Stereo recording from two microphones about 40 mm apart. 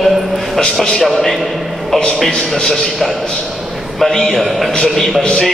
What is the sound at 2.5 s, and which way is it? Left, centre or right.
Speech, centre.